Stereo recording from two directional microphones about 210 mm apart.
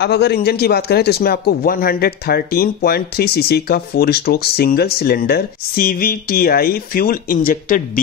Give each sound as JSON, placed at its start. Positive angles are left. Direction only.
{"t": 0.0, "sound": "speech", "side_deg": 50}